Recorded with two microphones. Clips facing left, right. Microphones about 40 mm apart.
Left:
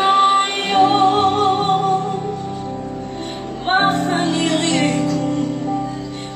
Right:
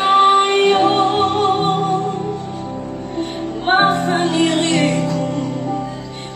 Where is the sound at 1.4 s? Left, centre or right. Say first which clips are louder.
Right 1 dB; right.